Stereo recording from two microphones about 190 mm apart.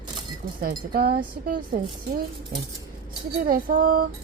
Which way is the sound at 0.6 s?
50° right (ahead or behind).